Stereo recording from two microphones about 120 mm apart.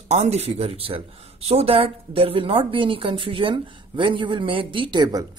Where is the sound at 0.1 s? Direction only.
65° right (ahead or behind).